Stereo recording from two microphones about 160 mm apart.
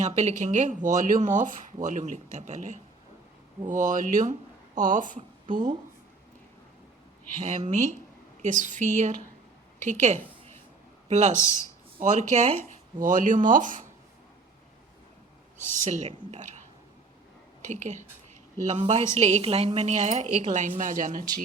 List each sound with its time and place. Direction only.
0.0 s speech: 45° right (ahead or behind)
7.7 s speech: 50° right (ahead or behind)
11.3 s speech: 15° left (ahead or behind)
12.0 s speech: 50° right (ahead or behind)
15.7 s speech: 50° right (ahead or behind)
17.6 s a woman's voice: 50° right (ahead or behind)